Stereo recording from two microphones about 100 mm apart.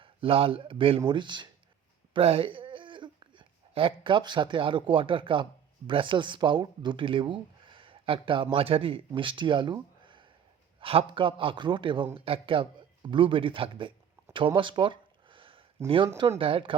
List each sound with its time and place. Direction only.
0.0 s speech: 70° right (ahead or behind); by 1.5 s 50° right (ahead or behind)
2.1 s speech: 75° right (ahead or behind); by 10.2 s 55° right (ahead or behind)
10.8 s speech: 65° right (ahead or behind)
12.1 s speech: 65° right (ahead or behind)
14.3 s a sound: 60° right (ahead or behind)
16.4 s speech: 60° right (ahead or behind)